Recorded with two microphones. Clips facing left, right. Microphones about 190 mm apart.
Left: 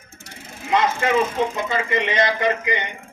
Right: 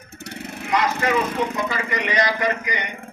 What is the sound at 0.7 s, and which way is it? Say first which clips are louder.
A man's voice: left 2 dB; 25° left (ahead or behind).